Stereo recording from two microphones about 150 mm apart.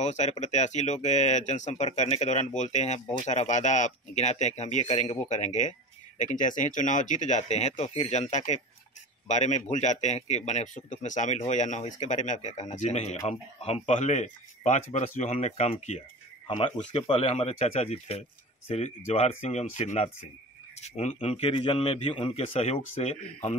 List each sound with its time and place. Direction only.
0.0 s a man's voice: 50° left (ahead or behind)
16.4 s a man's voice: 35° left (ahead or behind)